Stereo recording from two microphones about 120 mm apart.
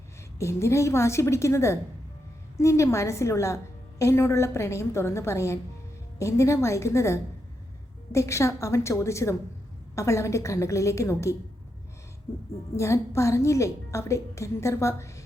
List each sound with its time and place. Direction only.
0.3 s a woman's voice: 25° left (ahead or behind)
12.7 s a woman's voice: 25° left (ahead or behind)